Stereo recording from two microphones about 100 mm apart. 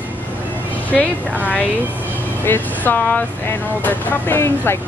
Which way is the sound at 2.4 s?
20° left (ahead or behind).